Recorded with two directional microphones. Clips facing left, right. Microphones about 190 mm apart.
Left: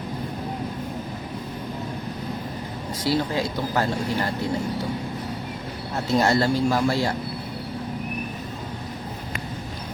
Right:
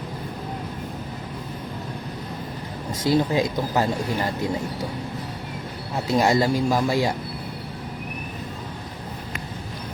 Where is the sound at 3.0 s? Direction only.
20° right (ahead or behind).